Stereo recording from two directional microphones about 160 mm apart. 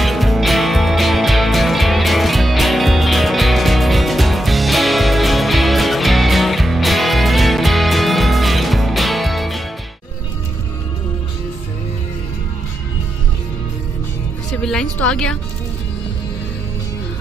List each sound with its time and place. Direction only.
0.0 s music: centre (ahead or behind)
14.6 s music: 5° left (ahead or behind)